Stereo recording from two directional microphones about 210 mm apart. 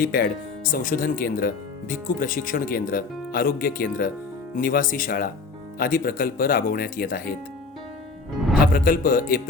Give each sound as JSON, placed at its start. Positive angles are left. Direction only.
{"t": 0.0, "sound": "speech", "side_deg": 40}
{"t": 8.6, "sound": "speech", "side_deg": 40}